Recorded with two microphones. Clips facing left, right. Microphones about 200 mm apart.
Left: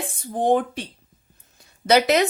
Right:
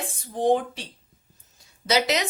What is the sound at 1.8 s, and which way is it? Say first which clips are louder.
Speech: left 6 dB; 55° left (ahead or behind).